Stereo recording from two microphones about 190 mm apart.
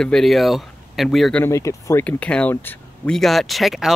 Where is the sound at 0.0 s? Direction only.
Centre (ahead or behind).